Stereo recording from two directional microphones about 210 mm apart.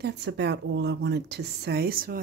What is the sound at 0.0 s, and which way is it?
Speech, 55° right (ahead or behind).